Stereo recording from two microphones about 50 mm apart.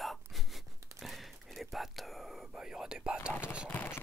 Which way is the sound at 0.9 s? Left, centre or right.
Centre.